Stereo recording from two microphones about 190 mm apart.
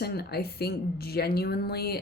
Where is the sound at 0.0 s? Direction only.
55° left (ahead or behind).